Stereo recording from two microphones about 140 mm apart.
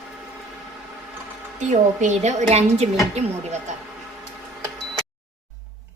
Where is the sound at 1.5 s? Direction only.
60° right (ahead or behind).